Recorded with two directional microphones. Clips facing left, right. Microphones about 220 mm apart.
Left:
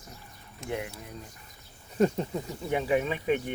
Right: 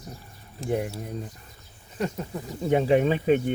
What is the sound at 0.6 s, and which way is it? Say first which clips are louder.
Speech: right 7 dB; 40° right (ahead or behind).